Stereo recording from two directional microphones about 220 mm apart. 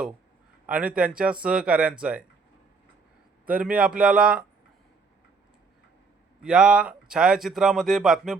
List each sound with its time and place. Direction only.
0.7 s speech: 5° right (ahead or behind)
3.4 s speech: 5° right (ahead or behind)
6.4 s speech: 5° right (ahead or behind)